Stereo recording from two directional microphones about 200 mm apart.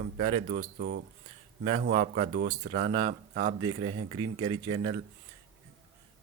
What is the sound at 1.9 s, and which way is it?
Speech, 30° right (ahead or behind).